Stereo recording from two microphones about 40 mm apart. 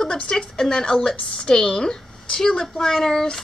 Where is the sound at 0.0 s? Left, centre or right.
Centre.